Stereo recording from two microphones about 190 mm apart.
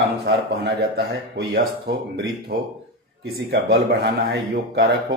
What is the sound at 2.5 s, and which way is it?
A man's voice, 55° right (ahead or behind).